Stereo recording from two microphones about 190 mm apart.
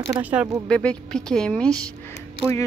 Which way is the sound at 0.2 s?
5° right (ahead or behind).